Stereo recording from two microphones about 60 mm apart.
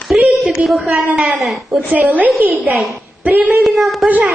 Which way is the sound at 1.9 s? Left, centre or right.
Right.